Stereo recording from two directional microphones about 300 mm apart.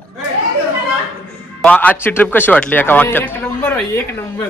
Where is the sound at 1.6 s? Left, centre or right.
Centre.